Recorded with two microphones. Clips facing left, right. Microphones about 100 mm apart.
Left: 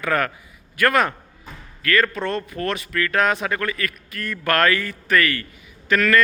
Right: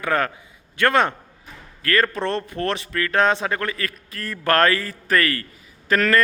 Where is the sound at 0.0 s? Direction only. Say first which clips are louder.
Even; 25° right (ahead or behind).